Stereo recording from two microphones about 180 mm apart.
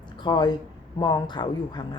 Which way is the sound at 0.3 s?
25° left (ahead or behind).